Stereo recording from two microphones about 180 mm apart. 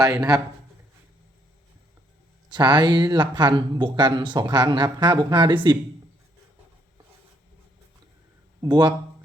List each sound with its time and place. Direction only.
0.0 s speech: 20° right (ahead or behind)
2.5 s speech: 25° right (ahead or behind)
8.6 s speech: 25° right (ahead or behind)